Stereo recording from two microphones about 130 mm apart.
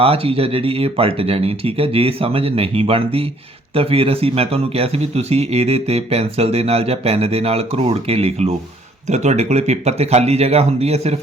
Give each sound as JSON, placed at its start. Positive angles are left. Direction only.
{"t": 0.0, "sound": "speech", "side_deg": -50}